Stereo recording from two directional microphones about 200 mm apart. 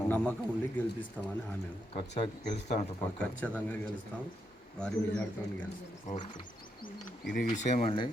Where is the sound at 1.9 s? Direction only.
25° left (ahead or behind).